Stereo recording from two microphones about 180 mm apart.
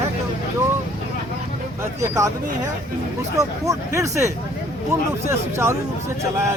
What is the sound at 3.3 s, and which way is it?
Speech, 20° right (ahead or behind).